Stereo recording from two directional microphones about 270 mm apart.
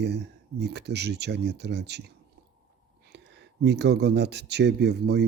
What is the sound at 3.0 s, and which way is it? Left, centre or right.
Speech, right.